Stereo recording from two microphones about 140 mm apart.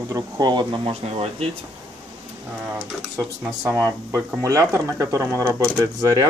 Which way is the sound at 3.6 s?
20° right (ahead or behind).